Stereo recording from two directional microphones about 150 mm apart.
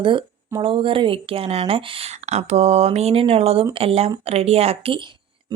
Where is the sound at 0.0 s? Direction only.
35° right (ahead or behind).